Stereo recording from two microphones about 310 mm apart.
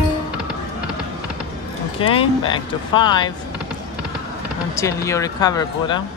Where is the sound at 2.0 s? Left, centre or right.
Centre.